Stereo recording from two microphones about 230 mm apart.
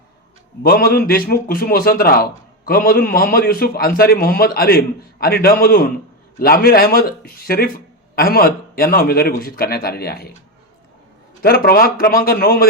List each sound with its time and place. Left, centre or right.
0.6 s a man's voice: left
11.4 s a man's voice: left